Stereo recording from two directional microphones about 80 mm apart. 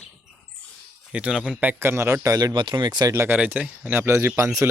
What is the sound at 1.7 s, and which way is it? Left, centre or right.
Speech, right.